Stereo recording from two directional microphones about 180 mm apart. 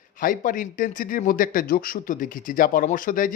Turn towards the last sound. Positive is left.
turn(degrees=50)  # may be behind; listen again after turning